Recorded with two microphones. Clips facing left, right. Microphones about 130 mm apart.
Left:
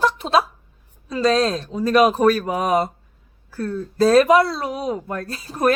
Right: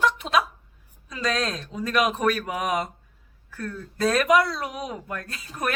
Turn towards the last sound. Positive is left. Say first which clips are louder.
# left 10 dB
turn(degrees=35)  # may be behind; listen again after turning